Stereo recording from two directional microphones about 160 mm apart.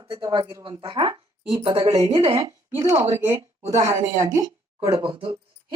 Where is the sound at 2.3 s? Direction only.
20° right (ahead or behind).